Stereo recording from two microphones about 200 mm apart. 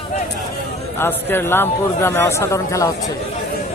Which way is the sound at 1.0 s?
10° left (ahead or behind).